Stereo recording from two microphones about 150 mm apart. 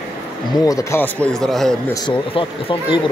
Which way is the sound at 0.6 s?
20° left (ahead or behind).